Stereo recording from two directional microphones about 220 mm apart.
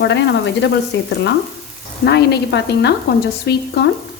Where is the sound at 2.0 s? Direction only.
45° left (ahead or behind).